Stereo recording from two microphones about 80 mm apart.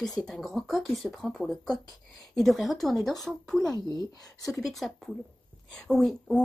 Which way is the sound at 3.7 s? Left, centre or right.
Left.